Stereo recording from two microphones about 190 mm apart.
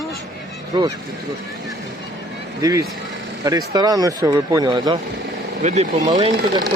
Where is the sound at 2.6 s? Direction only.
15° right (ahead or behind).